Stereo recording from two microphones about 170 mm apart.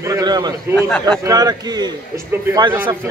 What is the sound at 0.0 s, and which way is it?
A man's voice, 20° right (ahead or behind).